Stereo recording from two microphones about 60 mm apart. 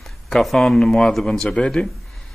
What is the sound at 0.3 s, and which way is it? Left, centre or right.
A man's voice, centre.